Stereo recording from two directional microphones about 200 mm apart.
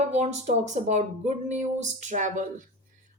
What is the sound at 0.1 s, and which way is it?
Speech, 35° right (ahead or behind).